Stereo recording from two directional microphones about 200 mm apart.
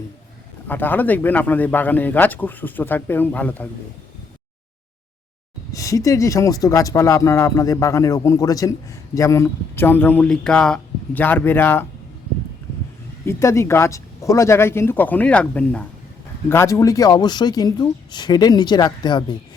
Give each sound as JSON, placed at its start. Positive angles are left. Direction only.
{"t": 0.7, "sound": "speech", "side_deg": 10}
{"t": 5.7, "sound": "speech", "side_deg": 15}
{"t": 13.2, "sound": "speech", "side_deg": 15}